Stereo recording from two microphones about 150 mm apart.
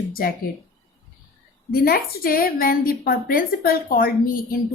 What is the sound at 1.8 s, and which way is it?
A woman's voice, 85° left.